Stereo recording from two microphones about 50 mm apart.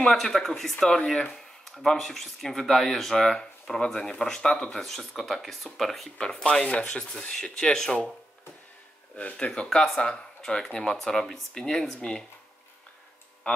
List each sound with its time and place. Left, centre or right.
0.0 s speech: centre
6.1 s speech: centre
9.1 s speech: left
9.7 s speech: centre